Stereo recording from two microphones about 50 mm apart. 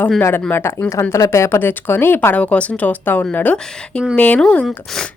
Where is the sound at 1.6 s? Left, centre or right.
Left.